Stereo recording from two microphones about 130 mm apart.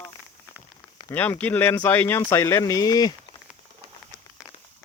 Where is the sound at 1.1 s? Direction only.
15° left (ahead or behind); by 3.1 s 30° left (ahead or behind).